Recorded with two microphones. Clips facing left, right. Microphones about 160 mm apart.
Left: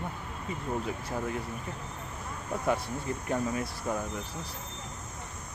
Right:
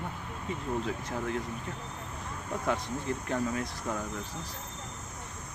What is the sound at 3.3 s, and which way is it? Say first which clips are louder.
Speech: left 2 dB; 10° left (ahead or behind).